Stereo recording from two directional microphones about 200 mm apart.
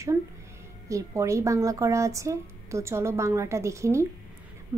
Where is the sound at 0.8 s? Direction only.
15° right (ahead or behind).